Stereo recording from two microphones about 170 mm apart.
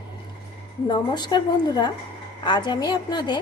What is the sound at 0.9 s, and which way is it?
Speech, 25° left (ahead or behind).